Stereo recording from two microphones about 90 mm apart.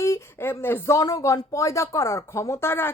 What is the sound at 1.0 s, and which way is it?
Speech, 40° left (ahead or behind).